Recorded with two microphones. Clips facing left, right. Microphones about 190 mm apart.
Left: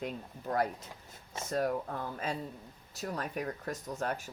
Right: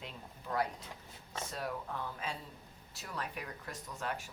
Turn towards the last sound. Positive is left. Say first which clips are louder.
# left 5 dB
turn(degrees=40)  # may be behind; listen again after turning